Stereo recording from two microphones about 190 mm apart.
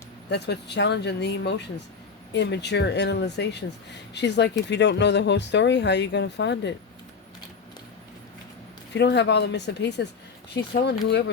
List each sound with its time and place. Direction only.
0.3 s speech: 60° left (ahead or behind)
8.9 s speech: 65° left (ahead or behind)